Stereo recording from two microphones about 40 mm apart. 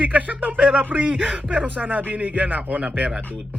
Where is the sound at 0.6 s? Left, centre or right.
Right.